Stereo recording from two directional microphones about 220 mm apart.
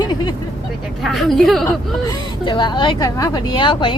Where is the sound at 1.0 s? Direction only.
Centre (ahead or behind).